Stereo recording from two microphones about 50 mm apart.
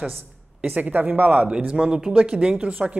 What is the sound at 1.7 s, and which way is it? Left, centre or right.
Speech, centre.